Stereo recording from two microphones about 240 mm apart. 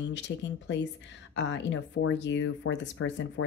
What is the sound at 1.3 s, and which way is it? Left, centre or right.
Speech, left.